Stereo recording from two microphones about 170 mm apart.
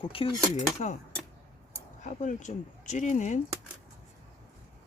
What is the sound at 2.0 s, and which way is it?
Speech, 45° left (ahead or behind).